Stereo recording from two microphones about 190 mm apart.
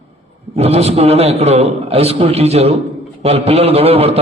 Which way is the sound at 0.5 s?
35° right (ahead or behind).